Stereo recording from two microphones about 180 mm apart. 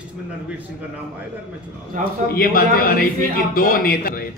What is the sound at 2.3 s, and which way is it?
A man's voice, 55° left (ahead or behind).